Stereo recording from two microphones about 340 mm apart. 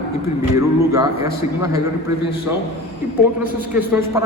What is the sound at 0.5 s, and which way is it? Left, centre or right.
Speech, centre.